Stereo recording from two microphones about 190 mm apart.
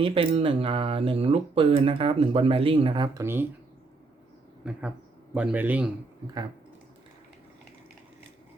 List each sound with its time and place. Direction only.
0.0 s speech: 30° right (ahead or behind)
5.3 s a man's voice: 5° right (ahead or behind)